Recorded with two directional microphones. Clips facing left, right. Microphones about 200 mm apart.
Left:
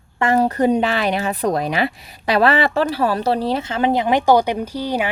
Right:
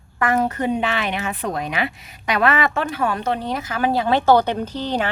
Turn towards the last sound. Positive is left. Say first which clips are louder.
# left 1 dB
turn(degrees=10)  # may be behind; listen again after turning